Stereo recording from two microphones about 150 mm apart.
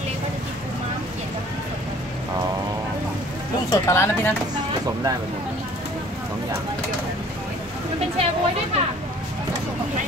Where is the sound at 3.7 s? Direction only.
20° left (ahead or behind).